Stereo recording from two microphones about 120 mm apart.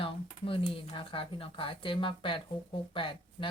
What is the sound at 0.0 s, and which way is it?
Speech, 50° left (ahead or behind).